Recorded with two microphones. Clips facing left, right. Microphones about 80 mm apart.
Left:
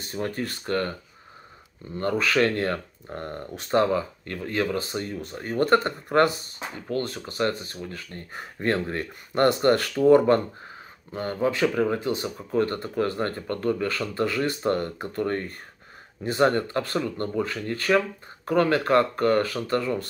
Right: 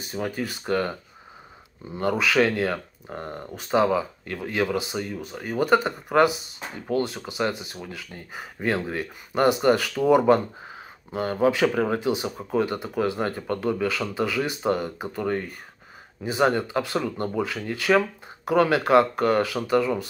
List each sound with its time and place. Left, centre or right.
0.0 s speech: centre